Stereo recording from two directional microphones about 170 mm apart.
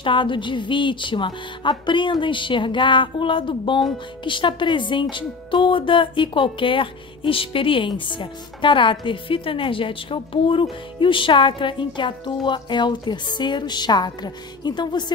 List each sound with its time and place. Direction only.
0.0 s speech: 30° left (ahead or behind)